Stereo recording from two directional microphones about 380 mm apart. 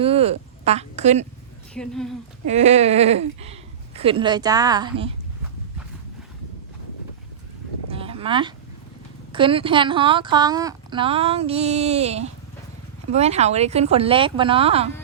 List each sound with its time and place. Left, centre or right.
0.0 s speech: centre
1.7 s speech: centre
2.5 s a woman's voice: centre
7.9 s a sound: centre
9.3 s a woman's voice: centre